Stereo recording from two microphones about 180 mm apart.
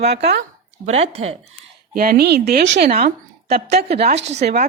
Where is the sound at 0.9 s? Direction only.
35° right (ahead or behind).